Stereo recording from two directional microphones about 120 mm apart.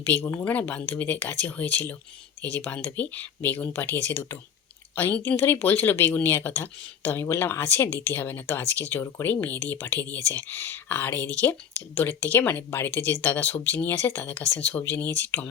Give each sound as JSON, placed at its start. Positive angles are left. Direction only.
{"t": 0.0, "sound": "speech", "side_deg": 20}